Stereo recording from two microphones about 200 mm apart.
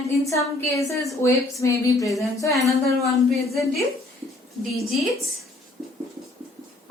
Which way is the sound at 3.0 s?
Centre (ahead or behind).